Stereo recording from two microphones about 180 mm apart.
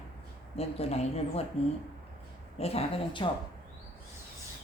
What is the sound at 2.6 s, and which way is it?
Speech, 35° left (ahead or behind).